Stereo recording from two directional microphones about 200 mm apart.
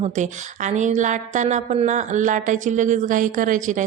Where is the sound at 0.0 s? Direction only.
35° right (ahead or behind).